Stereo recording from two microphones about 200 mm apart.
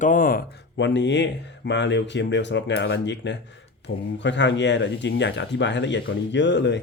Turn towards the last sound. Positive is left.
turn(degrees=60)  # may be behind; listen again after turning